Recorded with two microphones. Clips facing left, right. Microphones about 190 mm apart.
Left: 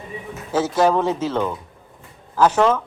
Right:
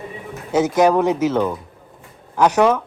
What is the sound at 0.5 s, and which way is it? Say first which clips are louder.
Speech: right 3 dB; 15° right (ahead or behind).